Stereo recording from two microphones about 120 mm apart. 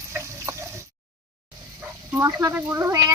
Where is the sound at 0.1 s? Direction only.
20° right (ahead or behind).